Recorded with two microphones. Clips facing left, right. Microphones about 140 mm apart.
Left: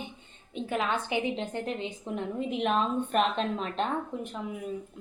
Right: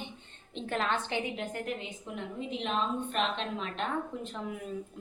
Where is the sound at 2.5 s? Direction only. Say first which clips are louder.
Left 4 dB; 55° left (ahead or behind).